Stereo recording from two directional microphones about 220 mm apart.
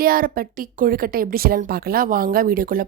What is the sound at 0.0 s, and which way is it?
Speech, 40° right (ahead or behind).